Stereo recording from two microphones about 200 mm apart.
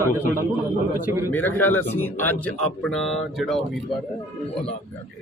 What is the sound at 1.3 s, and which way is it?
A man's voice, 10° left (ahead or behind).